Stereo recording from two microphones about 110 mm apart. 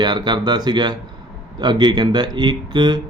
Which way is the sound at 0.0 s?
45° right (ahead or behind).